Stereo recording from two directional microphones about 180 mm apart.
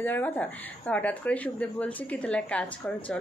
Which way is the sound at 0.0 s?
10° left (ahead or behind).